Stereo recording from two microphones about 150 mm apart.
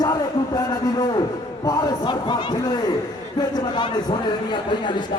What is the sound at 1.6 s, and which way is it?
A man's voice, 30° left (ahead or behind).